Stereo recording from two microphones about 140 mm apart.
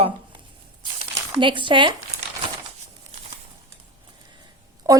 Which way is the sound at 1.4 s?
35° right (ahead or behind).